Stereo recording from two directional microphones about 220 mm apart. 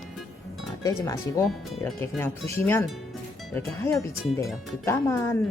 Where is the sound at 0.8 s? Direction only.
15° left (ahead or behind).